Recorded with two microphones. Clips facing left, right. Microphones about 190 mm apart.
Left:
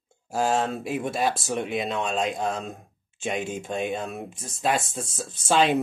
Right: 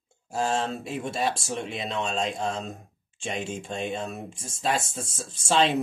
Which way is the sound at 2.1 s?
5° left (ahead or behind).